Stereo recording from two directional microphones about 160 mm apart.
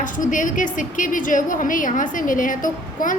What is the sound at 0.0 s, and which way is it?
A woman's voice, 55° left (ahead or behind).